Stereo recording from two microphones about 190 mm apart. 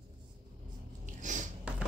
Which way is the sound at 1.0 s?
40° right (ahead or behind).